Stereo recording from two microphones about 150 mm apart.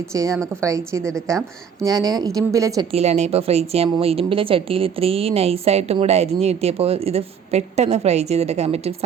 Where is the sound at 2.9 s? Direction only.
45° right (ahead or behind).